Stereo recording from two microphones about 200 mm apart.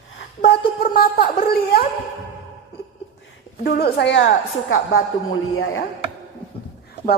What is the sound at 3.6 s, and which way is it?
A woman's voice, 50° left (ahead or behind).